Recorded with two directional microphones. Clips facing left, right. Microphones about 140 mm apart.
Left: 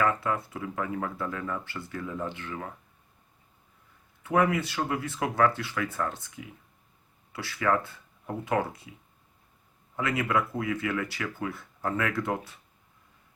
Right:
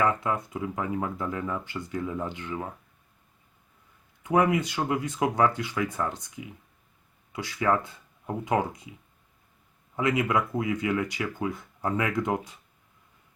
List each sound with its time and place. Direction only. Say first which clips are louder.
0.0 s speech: right 1 dB; 20° right (ahead or behind)
4.2 s speech: right 2 dB; 20° right (ahead or behind)
9.9 s speech: right 2 dB; 20° right (ahead or behind)